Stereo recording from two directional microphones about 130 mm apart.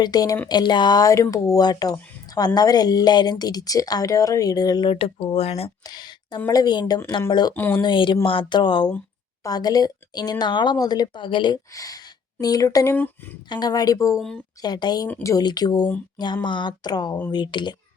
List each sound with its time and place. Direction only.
0.0 s speech: 30° left (ahead or behind)
2.2 s a sound: 30° left (ahead or behind)
2.6 s speech: 30° left (ahead or behind); by 5.7 s 50° left (ahead or behind)
5.8 s a sound: 30° left (ahead or behind)
6.5 s speech: 30° left (ahead or behind)
7.5 s speech: 15° left (ahead or behind)
7.8 s speech: 40° left (ahead or behind)
11.7 s speech: 25° left (ahead or behind)
13.5 s speech: 30° left (ahead or behind)
14.2 s speech: 5° left (ahead or behind)
14.6 s speech: 35° left (ahead or behind)
15.0 s speech: 20° left (ahead or behind)